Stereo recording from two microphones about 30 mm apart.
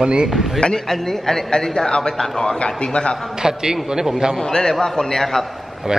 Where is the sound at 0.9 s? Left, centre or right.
Centre; by 2.1 s left.